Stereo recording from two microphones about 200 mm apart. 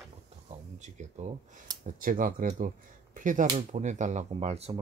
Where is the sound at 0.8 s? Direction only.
35° right (ahead or behind).